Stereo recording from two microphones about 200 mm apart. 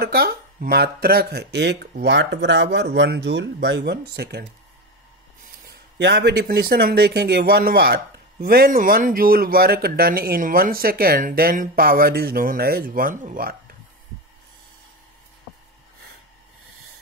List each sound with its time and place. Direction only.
0.0 s speech: 50° right (ahead or behind)